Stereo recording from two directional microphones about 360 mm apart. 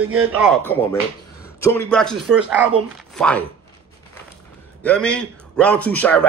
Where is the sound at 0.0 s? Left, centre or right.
Right.